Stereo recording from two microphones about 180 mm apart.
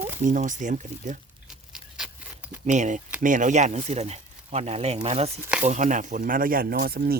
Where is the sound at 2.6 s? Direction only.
40° right (ahead or behind).